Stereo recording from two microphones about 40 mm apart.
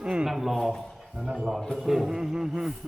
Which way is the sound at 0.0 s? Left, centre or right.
Right.